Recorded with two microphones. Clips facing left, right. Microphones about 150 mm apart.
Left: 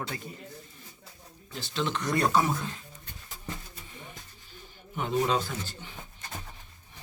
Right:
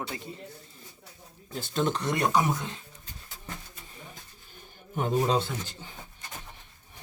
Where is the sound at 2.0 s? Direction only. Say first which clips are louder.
Left 4 dB; 20° right (ahead or behind).